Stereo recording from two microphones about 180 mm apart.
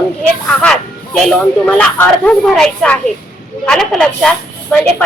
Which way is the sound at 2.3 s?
5° left (ahead or behind).